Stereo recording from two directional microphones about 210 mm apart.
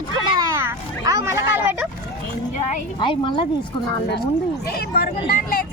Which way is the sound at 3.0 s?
25° left (ahead or behind).